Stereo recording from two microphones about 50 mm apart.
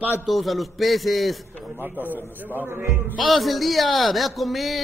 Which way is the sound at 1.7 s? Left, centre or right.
Right.